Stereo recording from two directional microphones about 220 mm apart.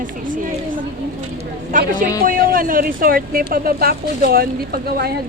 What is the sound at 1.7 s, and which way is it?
Speech, 40° right (ahead or behind).